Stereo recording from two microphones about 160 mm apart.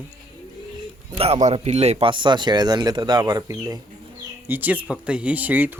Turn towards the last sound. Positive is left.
turn(degrees=-10)  # may be behind; listen again after turning